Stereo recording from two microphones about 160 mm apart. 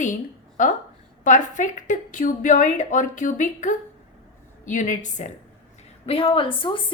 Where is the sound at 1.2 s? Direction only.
50° left (ahead or behind).